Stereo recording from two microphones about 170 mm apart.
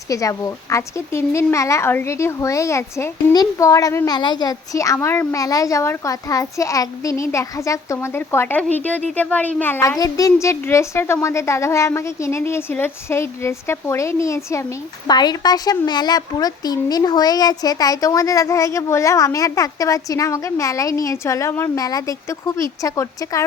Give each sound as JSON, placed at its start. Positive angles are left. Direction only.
{"t": 0.1, "sound": "a woman's voice", "side_deg": 20}